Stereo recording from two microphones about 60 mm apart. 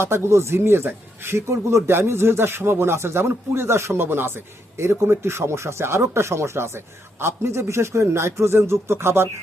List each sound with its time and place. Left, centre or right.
0.0 s speech: right